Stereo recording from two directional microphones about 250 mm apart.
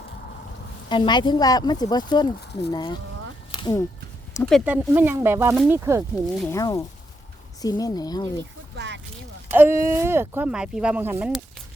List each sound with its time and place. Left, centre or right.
0.9 s speech: centre
2.4 s speech: left
2.7 s speech: centre
3.5 s a sound: centre
4.4 s speech: centre
6.4 s speech: centre
8.7 s a sound: right
9.5 s speech: centre